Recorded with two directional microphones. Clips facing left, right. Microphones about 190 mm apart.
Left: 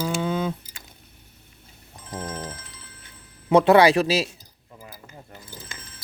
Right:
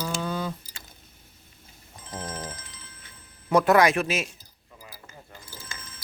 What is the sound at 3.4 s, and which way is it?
Speech, 25° left (ahead or behind).